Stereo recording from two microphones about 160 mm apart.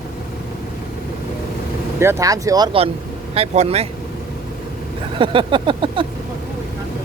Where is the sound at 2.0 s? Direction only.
15° right (ahead or behind).